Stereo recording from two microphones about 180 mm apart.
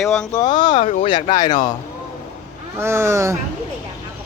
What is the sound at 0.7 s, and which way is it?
Speech, 40° left (ahead or behind).